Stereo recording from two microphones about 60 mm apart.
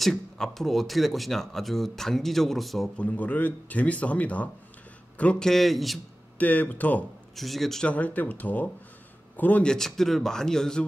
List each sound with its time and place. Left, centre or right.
0.0 s speech: centre
3.0 s a man's voice: left
5.4 s speech: centre
6.3 s speech: left
7.3 s speech: centre
7.8 s speech: left
9.6 s speech: centre